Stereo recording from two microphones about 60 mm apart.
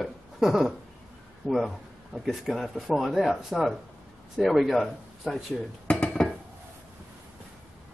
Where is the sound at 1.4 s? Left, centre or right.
Centre.